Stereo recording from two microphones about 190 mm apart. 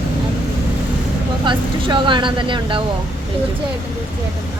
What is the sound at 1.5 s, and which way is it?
Speech, 25° right (ahead or behind).